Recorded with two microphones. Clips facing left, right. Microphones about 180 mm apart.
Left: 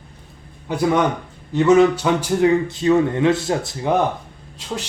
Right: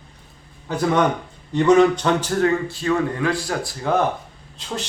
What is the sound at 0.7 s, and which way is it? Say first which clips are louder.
A man's voice: left 1 dB; 10° left (ahead or behind).